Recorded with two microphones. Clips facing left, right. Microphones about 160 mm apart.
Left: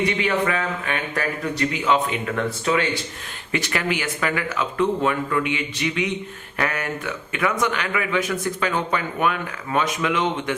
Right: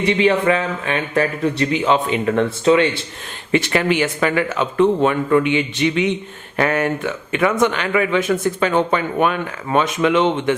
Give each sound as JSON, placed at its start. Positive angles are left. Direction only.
{"t": 0.2, "sound": "speech", "side_deg": -25}